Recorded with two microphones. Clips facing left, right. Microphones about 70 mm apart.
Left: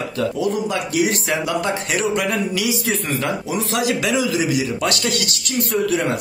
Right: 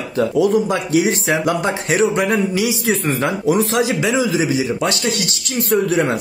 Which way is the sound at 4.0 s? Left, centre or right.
Right.